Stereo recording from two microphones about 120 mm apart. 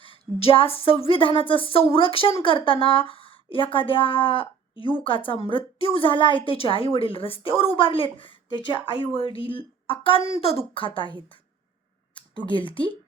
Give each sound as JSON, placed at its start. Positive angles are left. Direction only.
{"t": 0.0, "sound": "a woman's voice", "side_deg": 50}
{"t": 12.5, "sound": "a woman's voice", "side_deg": 40}